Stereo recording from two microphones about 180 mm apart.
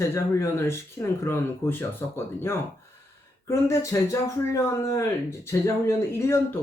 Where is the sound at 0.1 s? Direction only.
15° left (ahead or behind).